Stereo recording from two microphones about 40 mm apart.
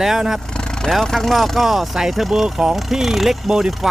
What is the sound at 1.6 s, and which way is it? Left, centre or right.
Speech, centre.